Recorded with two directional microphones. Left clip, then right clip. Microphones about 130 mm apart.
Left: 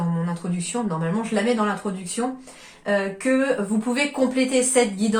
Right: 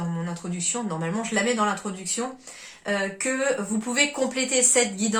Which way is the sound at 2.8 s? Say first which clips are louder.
Left 4 dB; 35° right (ahead or behind).